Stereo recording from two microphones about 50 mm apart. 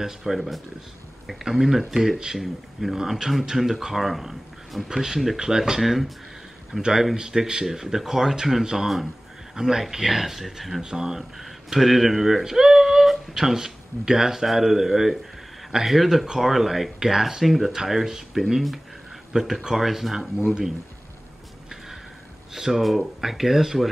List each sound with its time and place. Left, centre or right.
0.2 s speech: centre
22.5 s speech: centre